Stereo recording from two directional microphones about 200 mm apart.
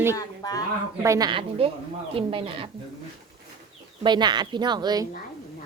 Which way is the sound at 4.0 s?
20° right (ahead or behind).